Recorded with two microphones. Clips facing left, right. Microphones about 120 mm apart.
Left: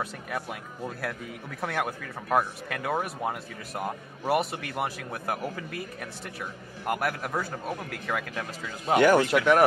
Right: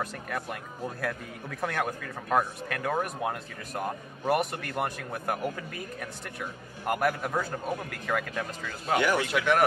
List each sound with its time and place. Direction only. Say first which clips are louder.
0.0 s a man's voice: even; 5° left (ahead or behind)
9.0 s speech: left 8 dB; 45° left (ahead or behind)